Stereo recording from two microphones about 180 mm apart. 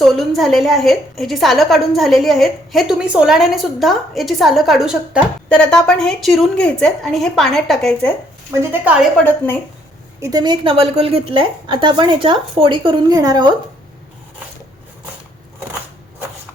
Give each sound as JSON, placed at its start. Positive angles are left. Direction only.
{"t": 0.0, "sound": "a woman's voice", "side_deg": 0}
{"t": 8.4, "sound": "a woman's voice", "side_deg": -10}
{"t": 9.1, "sound": "a woman's voice", "side_deg": 10}
{"t": 10.2, "sound": "a woman's voice", "side_deg": -20}